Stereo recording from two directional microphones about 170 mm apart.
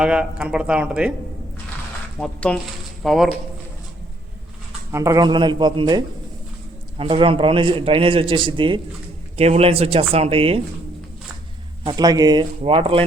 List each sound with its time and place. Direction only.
0.0 s speech: 5° right (ahead or behind)
2.1 s speech: 5° left (ahead or behind)
4.9 s speech: 15° right (ahead or behind)
7.0 s a man's voice: 30° right (ahead or behind)
11.8 s speech: 25° right (ahead or behind)